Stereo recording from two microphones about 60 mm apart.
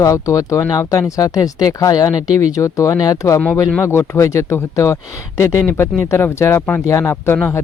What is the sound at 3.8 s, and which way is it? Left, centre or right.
Speech, left.